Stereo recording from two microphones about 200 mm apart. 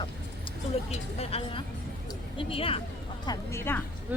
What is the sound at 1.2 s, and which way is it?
Speech, 30° left (ahead or behind).